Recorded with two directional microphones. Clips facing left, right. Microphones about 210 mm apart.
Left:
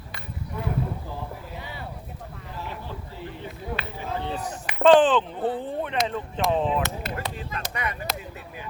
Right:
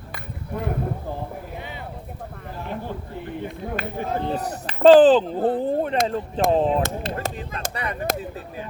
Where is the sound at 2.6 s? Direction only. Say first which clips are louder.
Right 6 dB; 55° right (ahead or behind).